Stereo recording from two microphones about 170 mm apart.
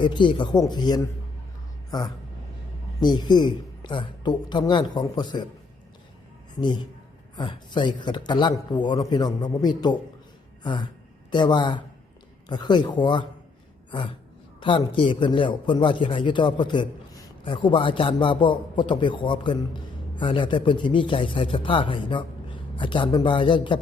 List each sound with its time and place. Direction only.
0.0 s a man's voice: 25° left (ahead or behind)
6.6 s a man's voice: 25° left (ahead or behind)
10.6 s a sound: 25° left (ahead or behind)
11.3 s a man's voice: 25° left (ahead or behind)
14.6 s a man's voice: 30° left (ahead or behind)